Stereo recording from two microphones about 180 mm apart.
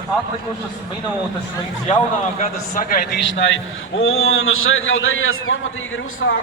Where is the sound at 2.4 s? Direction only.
50° left (ahead or behind).